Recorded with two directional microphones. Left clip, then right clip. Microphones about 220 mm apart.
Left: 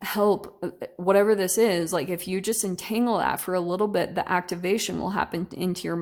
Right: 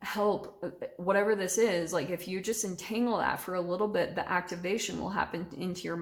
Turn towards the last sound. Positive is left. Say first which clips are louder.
# left 7 dB
turn(degrees=40)  # may be behind; listen again after turning